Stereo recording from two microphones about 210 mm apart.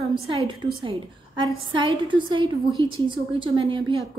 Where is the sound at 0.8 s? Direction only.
25° right (ahead or behind).